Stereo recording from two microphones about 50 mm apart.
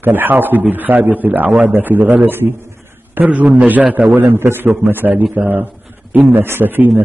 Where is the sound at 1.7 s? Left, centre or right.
Right.